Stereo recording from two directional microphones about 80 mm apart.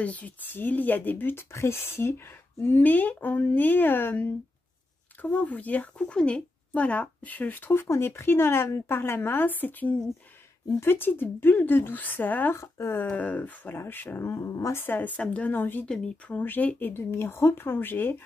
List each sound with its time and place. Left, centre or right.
0.0 s speech: centre
7.9 s a woman's voice: left
13.0 s speech: centre
14.3 s a woman's voice: left
14.8 s speech: left
15.9 s speech: centre
16.3 s speech: left